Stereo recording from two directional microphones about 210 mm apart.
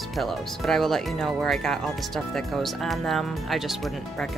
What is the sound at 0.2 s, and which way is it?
Speech, centre (ahead or behind).